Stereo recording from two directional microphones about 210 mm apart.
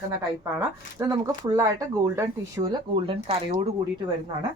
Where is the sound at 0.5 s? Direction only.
15° right (ahead or behind).